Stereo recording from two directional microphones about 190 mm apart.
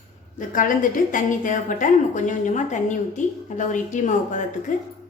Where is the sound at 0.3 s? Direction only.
45° left (ahead or behind).